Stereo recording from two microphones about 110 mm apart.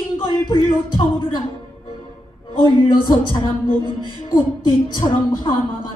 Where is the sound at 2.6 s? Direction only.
40° left (ahead or behind).